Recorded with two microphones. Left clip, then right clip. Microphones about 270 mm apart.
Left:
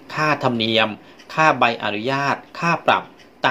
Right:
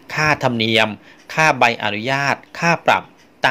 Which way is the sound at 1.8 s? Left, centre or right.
Right.